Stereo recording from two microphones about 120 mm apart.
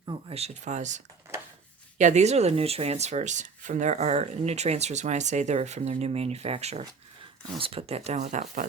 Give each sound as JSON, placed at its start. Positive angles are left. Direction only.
{"t": 0.3, "sound": "speech", "side_deg": -60}